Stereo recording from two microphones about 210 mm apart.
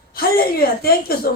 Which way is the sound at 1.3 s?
50° left (ahead or behind).